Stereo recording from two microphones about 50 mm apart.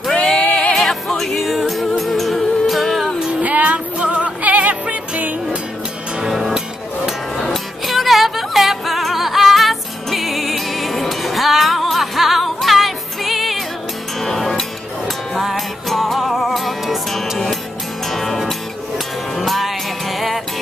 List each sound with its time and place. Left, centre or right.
0.1 s a sound: centre
0.7 s music: centre
3.3 s music: right
6.1 s music: centre